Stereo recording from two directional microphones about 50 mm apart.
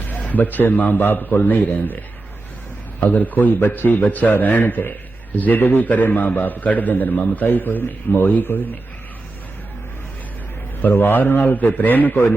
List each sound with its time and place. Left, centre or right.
0.3 s a man's voice: left
3.0 s a man's voice: left
10.8 s a man's voice: left